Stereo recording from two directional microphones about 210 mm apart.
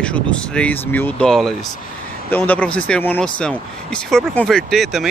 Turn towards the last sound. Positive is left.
turn(degrees=0)  # may be behind; listen again after turning